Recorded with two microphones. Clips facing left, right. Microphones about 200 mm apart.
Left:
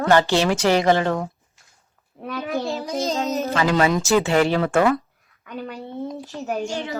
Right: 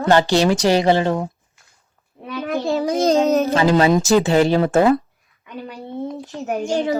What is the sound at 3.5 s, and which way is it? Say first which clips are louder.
A woman's voice: right 1 dB; 30° right (ahead or behind).